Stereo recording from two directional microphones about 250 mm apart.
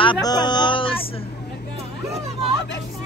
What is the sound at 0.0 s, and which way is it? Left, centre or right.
Music, centre.